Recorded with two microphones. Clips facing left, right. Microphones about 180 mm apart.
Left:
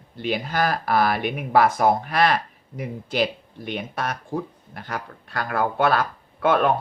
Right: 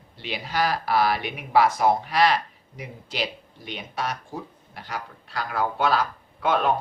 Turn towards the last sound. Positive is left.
turn(degrees=50)  # may be behind; listen again after turning